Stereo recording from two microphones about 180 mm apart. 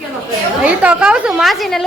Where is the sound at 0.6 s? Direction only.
5° right (ahead or behind).